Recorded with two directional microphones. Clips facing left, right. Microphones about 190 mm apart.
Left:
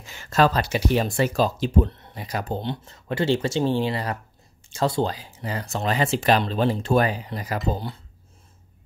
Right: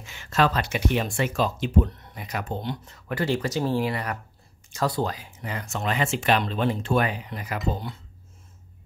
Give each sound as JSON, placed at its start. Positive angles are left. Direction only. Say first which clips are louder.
{"t": 0.0, "sound": "speech", "louder": "left 3 dB", "side_deg": 40}